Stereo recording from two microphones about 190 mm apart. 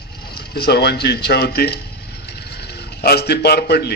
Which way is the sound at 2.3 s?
60° left (ahead or behind).